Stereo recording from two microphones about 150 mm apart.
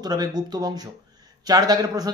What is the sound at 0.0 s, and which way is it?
Speech, 25° right (ahead or behind).